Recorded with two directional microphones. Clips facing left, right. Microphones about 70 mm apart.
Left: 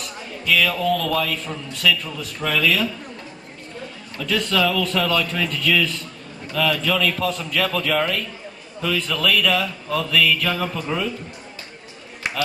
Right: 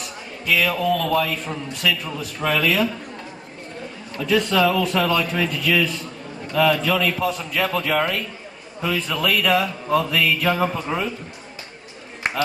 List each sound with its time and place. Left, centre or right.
0.4 s a man's voice: right
4.2 s a man's voice: centre
12.2 s a sound: right